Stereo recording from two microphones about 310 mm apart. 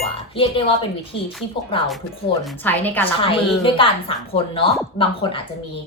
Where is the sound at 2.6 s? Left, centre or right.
Centre.